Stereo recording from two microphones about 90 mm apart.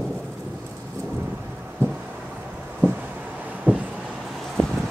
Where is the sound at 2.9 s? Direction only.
20° right (ahead or behind).